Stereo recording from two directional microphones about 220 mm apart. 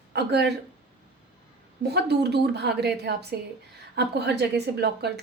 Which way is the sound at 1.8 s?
50° right (ahead or behind).